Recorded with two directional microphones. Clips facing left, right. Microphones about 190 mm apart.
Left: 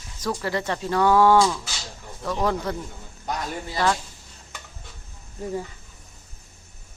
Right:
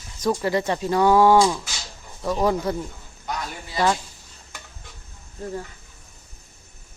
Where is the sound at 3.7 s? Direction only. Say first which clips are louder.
Right 2 dB; 15° right (ahead or behind).